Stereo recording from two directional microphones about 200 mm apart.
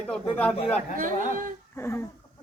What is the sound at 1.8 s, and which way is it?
Speech, 10° left (ahead or behind).